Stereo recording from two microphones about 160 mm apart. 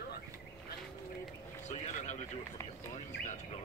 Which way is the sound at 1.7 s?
45° left (ahead or behind).